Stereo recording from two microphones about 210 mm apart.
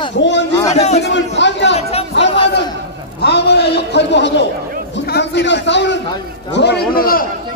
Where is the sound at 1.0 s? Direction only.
55° left (ahead or behind).